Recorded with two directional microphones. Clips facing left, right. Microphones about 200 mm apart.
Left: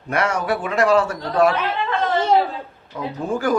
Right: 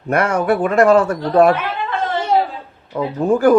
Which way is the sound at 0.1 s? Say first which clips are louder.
Right 5 dB; 55° right (ahead or behind).